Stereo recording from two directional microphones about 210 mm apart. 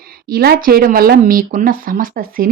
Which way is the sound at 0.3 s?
45° right (ahead or behind).